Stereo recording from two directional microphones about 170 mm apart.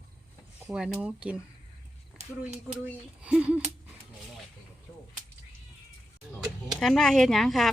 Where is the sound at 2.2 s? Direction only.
40° right (ahead or behind).